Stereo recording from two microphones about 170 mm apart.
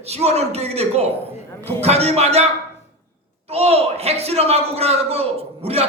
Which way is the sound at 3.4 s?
35° right (ahead or behind).